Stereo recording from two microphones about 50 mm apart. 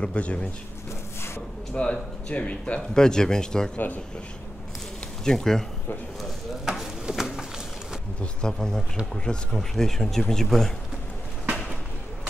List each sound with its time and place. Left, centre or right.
0.0 s speech: left
1.8 s speech: left
3.7 s speech: left
5.2 s speech: centre
6.6 s a sound: centre
8.2 s speech: centre
9.5 s speech: centre